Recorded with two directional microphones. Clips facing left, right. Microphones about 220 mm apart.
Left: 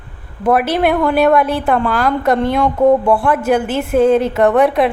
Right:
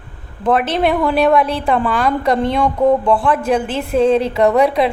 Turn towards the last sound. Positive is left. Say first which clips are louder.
# left 1 dB
turn(degrees=0)  # may be behind; listen again after turning